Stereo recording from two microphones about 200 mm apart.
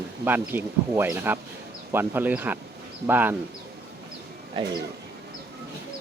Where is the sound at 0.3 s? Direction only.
10° right (ahead or behind).